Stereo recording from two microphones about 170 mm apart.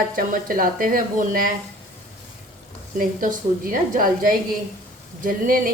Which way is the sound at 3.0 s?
55° right (ahead or behind).